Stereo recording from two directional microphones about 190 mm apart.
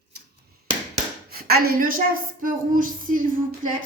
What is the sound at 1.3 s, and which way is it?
A woman's voice, 50° right (ahead or behind).